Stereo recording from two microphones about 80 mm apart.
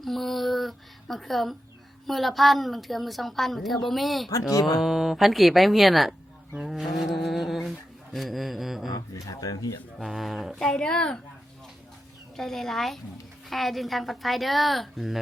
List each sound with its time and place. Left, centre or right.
0.0 s a sound: centre
2.0 s a woman's voice: centre
4.3 s speech: left
4.8 s a woman's voice: centre
6.7 s a sound: centre
8.1 s a woman's voice: centre
8.9 s speech: left
10.0 s a woman's voice: centre
10.7 s speech: centre
12.4 s a woman's voice: centre